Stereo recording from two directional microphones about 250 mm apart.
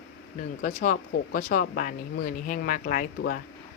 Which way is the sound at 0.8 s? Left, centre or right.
Left.